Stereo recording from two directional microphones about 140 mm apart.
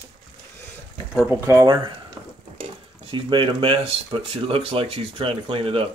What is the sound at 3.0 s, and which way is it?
Speech, 35° right (ahead or behind).